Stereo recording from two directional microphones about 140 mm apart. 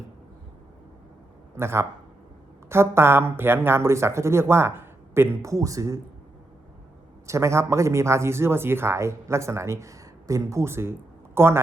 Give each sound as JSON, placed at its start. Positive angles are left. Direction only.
{"t": 1.5, "sound": "a man's voice", "side_deg": -20}
{"t": 7.3, "sound": "a man's voice", "side_deg": -20}